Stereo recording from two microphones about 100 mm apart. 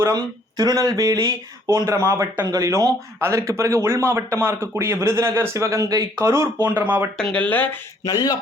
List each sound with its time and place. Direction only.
0.0 s speech: 40° right (ahead or behind)
2.4 s speech: 40° right (ahead or behind)
6.6 s speech: 20° right (ahead or behind)
7.2 s speech: 10° left (ahead or behind)
8.0 s speech: 40° left (ahead or behind)